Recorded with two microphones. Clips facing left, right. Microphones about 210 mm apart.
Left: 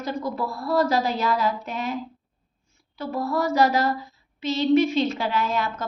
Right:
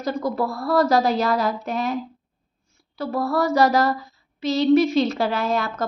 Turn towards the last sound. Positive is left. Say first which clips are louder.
# right 3 dB
turn(degrees=-35)  # may be behind; listen again after turning